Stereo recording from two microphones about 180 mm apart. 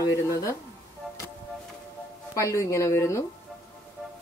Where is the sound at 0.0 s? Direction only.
15° left (ahead or behind).